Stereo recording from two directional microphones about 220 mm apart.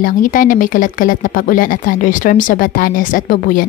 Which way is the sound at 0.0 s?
40° left (ahead or behind).